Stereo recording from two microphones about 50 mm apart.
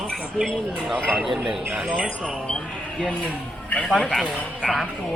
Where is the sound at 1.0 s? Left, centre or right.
Right.